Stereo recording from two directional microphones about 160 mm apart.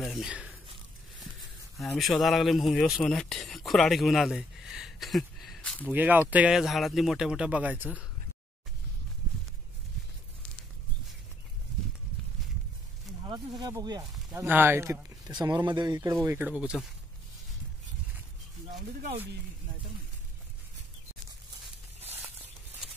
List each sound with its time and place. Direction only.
0.0 s a sound: centre (ahead or behind)
2.0 s speech: centre (ahead or behind)
5.9 s speech: 10° right (ahead or behind)
13.2 s speech: 25° right (ahead or behind)
14.3 s speech: 10° right (ahead or behind)
16.3 s speech: 10° right (ahead or behind)